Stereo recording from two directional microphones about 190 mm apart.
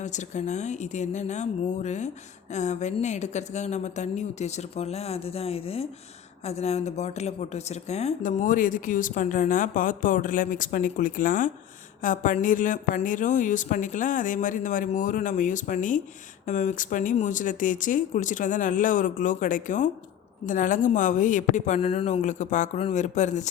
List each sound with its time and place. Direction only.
0.0 s a woman's voice: 40° left (ahead or behind)